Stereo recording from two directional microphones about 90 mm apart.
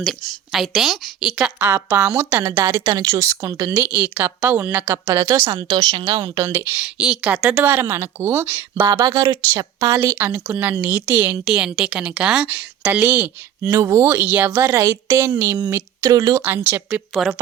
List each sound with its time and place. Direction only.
0.5 s a woman's voice: 5° right (ahead or behind); by 3.8 s 35° right (ahead or behind)
3.8 s speech: 15° right (ahead or behind); by 5.4 s 40° right (ahead or behind)
5.8 s a woman's voice: 50° right (ahead or behind)
6.2 s speech: 35° right (ahead or behind)
6.7 s speech: 10° right (ahead or behind)
9.0 s a woman's voice: 45° right (ahead or behind)
10.1 s speech: 25° right (ahead or behind)
10.4 s a woman's voice: 15° right (ahead or behind)
13.7 s speech: 30° right (ahead or behind)
14.2 s speech: 20° right (ahead or behind)
15.7 s speech: 40° right (ahead or behind)
16.4 s speech: 25° right (ahead or behind)